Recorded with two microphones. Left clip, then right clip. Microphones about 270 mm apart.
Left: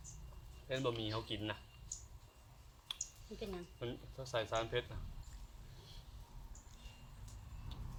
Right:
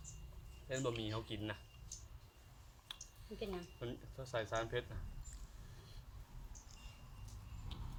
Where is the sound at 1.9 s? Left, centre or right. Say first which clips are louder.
Left 4 dB; centre.